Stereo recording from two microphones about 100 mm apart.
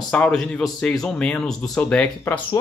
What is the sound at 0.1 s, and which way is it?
Speech, 10° left (ahead or behind).